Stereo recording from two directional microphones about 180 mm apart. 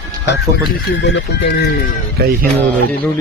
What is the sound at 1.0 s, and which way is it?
Speech, 75° left (ahead or behind).